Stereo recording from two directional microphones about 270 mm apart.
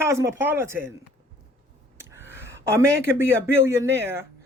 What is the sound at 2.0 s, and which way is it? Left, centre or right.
Speech, centre.